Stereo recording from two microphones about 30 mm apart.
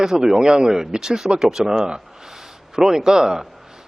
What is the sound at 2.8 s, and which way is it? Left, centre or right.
Speech, centre.